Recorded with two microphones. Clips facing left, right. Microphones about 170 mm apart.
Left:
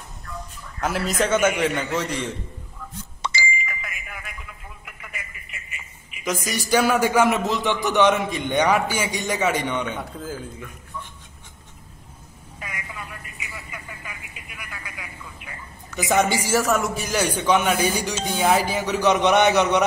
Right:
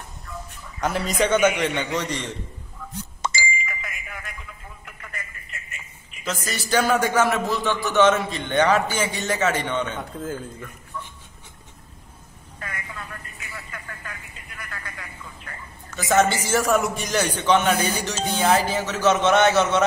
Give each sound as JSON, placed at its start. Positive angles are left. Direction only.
{"t": 0.7, "sound": "a man's voice", "side_deg": 5}
{"t": 3.2, "sound": "a sound", "side_deg": -45}
{"t": 3.6, "sound": "a sound", "side_deg": 0}
{"t": 4.8, "sound": "telephone", "side_deg": 5}
{"t": 6.2, "sound": "a man's voice", "side_deg": 15}
{"t": 12.5, "sound": "telephone", "side_deg": 15}
{"t": 16.0, "sound": "a man's voice", "side_deg": 15}